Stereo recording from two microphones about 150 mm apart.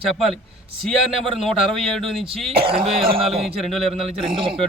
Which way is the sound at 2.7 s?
40° right (ahead or behind).